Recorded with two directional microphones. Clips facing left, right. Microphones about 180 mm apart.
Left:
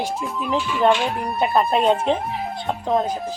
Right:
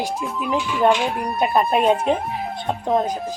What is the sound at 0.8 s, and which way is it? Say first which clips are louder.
Speech: even; 15° right (ahead or behind).